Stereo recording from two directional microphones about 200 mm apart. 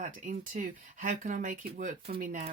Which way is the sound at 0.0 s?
40° right (ahead or behind).